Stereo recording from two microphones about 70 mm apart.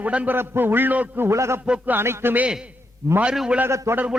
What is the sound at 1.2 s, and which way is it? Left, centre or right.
A man's voice, right.